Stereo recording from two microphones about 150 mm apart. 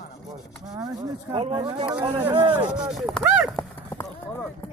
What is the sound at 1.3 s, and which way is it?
Speech, 40° right (ahead or behind).